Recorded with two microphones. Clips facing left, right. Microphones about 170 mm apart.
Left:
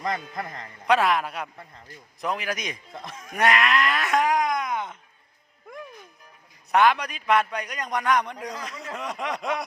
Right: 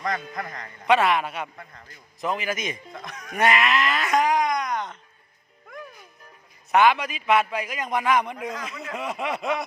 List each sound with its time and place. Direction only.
0.0 s a man's voice: 25° left (ahead or behind)
0.9 s a man's voice: centre (ahead or behind)
3.2 s wail: centre (ahead or behind)
6.7 s a man's voice: centre (ahead or behind)